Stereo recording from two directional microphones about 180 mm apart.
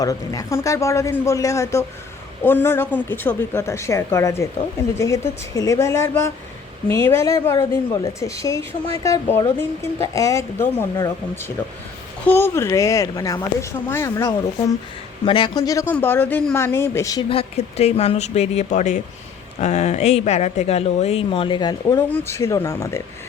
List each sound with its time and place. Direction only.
0.0 s speech: 20° left (ahead or behind)
15.3 s speech: 25° left (ahead or behind)
17.2 s speech: 35° left (ahead or behind); by 23.0 s 15° left (ahead or behind)